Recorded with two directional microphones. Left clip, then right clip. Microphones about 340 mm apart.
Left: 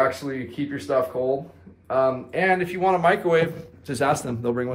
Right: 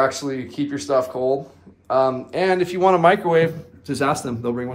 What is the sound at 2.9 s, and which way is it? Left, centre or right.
Speech, right.